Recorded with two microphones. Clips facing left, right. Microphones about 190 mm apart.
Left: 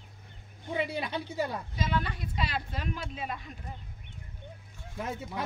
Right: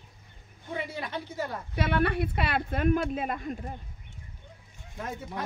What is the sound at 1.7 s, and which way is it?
Speech, 65° right (ahead or behind).